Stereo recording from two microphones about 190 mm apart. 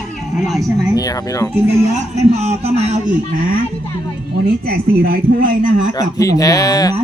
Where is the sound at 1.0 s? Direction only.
20° left (ahead or behind).